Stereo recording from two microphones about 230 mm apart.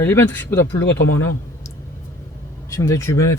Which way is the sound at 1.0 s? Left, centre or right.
Left.